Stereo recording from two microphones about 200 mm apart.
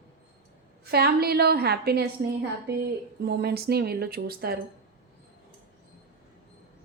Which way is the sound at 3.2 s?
55° right (ahead or behind).